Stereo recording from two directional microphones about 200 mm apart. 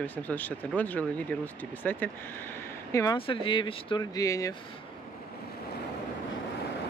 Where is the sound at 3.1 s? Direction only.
25° left (ahead or behind).